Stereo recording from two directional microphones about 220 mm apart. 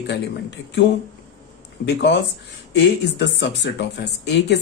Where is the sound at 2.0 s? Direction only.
50° left (ahead or behind).